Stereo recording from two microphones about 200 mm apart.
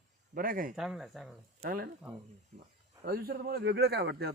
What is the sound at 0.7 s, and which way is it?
Speech, centre (ahead or behind).